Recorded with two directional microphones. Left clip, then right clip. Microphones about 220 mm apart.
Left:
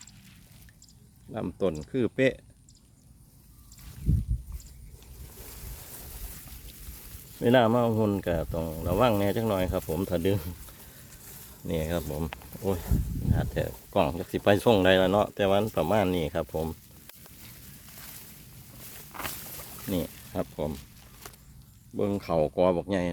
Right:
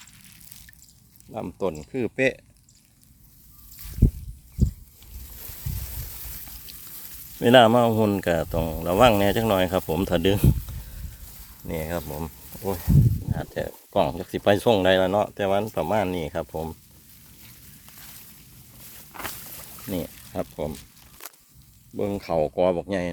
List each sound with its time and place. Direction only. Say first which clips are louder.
1.3 s speech: right 1 dB; 5° left (ahead or behind)
6.7 s frying: right 7 dB; 15° right (ahead or behind)
7.3 s speech: right 7 dB; 20° right (ahead or behind)
11.7 s speech: right 1 dB; centre (ahead or behind)
19.1 s rodents: right 2 dB; 10° right (ahead or behind)
19.9 s speech: right 1 dB; 5° right (ahead or behind)
21.9 s speech: right 2 dB; 10° right (ahead or behind)